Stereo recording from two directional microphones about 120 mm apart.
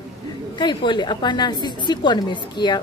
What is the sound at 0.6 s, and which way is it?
A woman's voice, 40° left (ahead or behind).